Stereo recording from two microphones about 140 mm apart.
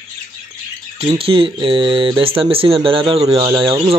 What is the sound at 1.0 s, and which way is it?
Speech, 40° right (ahead or behind).